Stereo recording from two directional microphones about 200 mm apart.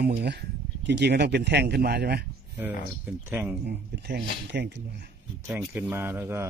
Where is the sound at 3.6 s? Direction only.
55° right (ahead or behind).